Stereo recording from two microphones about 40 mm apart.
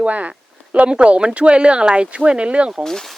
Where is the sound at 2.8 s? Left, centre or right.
Centre.